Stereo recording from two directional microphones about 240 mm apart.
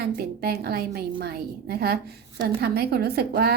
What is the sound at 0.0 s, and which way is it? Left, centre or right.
A woman's voice, right.